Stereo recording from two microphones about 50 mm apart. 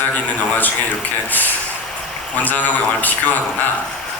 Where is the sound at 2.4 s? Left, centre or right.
Left.